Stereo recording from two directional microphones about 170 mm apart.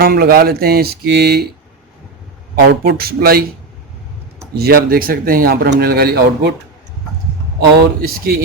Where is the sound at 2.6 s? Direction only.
70° right (ahead or behind).